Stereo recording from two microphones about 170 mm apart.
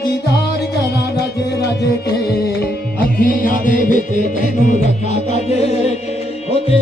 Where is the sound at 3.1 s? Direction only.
55° left (ahead or behind).